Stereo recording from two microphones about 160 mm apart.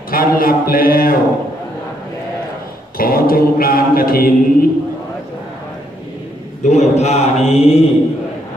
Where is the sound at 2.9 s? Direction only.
65° left (ahead or behind).